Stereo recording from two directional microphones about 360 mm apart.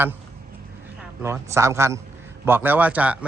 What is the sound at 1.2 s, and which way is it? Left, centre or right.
A man's voice, centre.